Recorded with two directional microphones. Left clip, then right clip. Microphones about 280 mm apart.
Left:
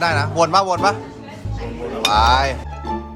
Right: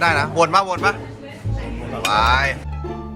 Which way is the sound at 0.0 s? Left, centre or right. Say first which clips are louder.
Right 1 dB; centre.